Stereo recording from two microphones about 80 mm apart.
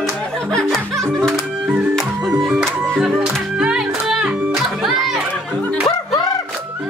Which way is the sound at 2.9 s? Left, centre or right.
Centre.